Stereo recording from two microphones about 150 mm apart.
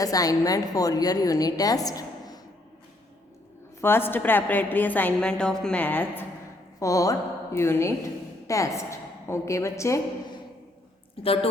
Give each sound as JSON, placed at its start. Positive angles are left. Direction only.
{"t": 0.0, "sound": "a woman's voice", "side_deg": 25}
{"t": 3.8, "sound": "a woman's voice", "side_deg": 15}
{"t": 6.7, "sound": "a woman's voice", "side_deg": 20}
{"t": 11.2, "sound": "a woman's voice", "side_deg": 40}